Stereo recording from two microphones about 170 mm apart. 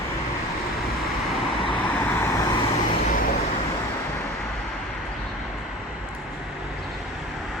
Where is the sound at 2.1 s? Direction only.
15° left (ahead or behind).